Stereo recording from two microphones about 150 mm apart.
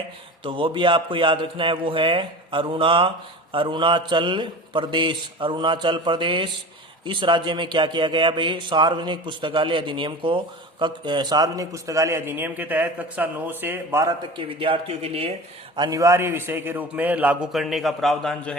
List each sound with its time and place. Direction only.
0.4 s a man's voice: 35° right (ahead or behind); by 14.1 s 15° right (ahead or behind)
14.2 s a man's voice: 35° right (ahead or behind)
15.7 s a man's voice: 25° right (ahead or behind); by 18.5 s centre (ahead or behind)